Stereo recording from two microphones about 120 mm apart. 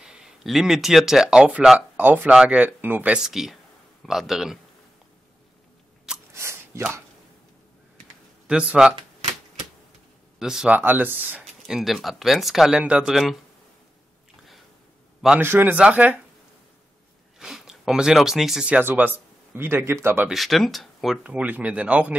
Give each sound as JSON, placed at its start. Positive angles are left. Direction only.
{"t": 0.0, "sound": "speech", "side_deg": -5}
{"t": 6.3, "sound": "a sound", "side_deg": -20}
{"t": 8.5, "sound": "a sound", "side_deg": -10}
{"t": 10.4, "sound": "speech", "side_deg": -5}
{"t": 10.8, "sound": "speech", "side_deg": -15}
{"t": 11.4, "sound": "speech", "side_deg": 0}
{"t": 15.4, "sound": "speech", "side_deg": -15}
{"t": 17.4, "sound": "speech", "side_deg": -5}
{"t": 20.2, "sound": "speech", "side_deg": 0}
{"t": 21.3, "sound": "speech", "side_deg": -15}